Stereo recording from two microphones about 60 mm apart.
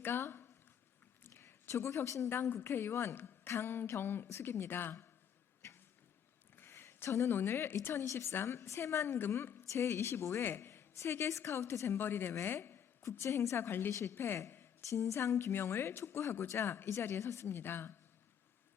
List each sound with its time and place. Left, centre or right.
0.0 s speech: left
1.2 s a sound: left
2.0 s a woman's voice: left
6.6 s a sound: left
7.1 s speech: left
7.3 s a woman's voice: left
9.3 s a woman's voice: left
9.6 s a woman's voice: left
12.5 s a sound: left
13.1 s a woman's voice: left
13.9 s speech: left
14.5 s a sound: left
14.8 s a woman's voice: left
17.6 s a woman's voice: left